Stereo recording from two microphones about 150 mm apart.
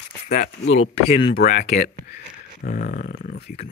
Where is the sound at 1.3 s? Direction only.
85° left.